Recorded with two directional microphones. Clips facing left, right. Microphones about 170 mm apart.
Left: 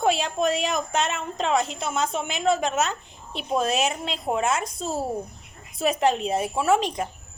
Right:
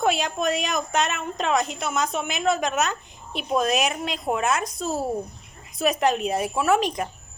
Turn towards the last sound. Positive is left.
turn(degrees=25)  # may be behind; listen again after turning